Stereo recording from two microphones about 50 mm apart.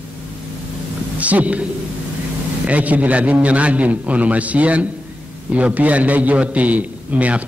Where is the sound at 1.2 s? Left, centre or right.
Right.